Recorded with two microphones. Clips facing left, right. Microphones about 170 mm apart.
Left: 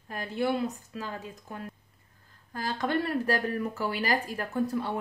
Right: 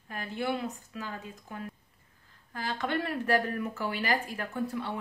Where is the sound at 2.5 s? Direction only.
40° left (ahead or behind).